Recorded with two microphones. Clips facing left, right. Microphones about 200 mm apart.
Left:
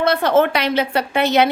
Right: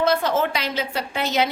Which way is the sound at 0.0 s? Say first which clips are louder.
Left 5 dB; 65° left (ahead or behind).